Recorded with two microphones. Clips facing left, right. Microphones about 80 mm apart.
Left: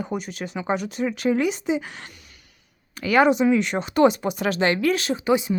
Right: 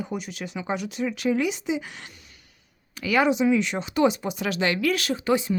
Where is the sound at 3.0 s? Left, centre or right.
Left; by 5.6 s centre.